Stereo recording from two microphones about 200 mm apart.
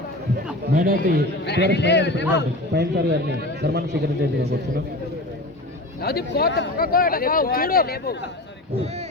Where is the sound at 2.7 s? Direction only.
55° right (ahead or behind).